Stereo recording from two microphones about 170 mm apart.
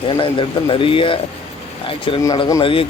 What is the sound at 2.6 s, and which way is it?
Speech, 30° left (ahead or behind).